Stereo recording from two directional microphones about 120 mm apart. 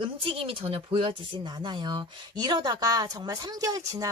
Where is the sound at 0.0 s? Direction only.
50° right (ahead or behind).